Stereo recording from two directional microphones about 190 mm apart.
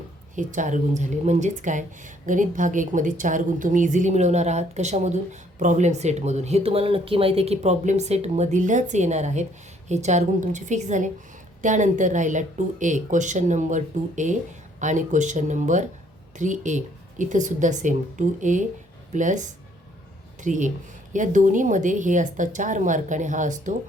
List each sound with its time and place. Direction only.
0.3 s speech: 40° right (ahead or behind)